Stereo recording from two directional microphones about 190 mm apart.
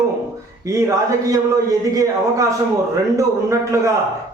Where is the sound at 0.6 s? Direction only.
15° right (ahead or behind).